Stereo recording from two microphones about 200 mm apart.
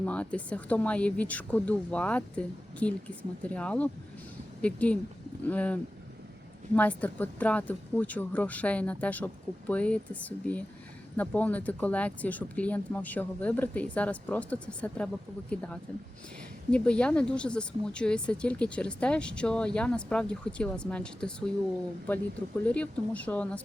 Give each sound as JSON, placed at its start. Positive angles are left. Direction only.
{"t": 0.0, "sound": "speech", "side_deg": 5}